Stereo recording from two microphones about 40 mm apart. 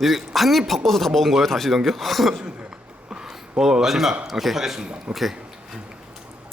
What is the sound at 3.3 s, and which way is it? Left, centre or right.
A man's voice, centre.